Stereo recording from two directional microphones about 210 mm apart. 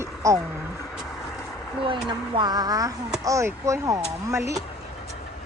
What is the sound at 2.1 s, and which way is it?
Speech, 20° right (ahead or behind).